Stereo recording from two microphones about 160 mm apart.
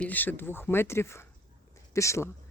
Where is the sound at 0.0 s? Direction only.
10° left (ahead or behind).